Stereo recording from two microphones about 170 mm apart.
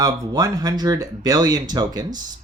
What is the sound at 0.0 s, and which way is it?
Speech, 20° right (ahead or behind).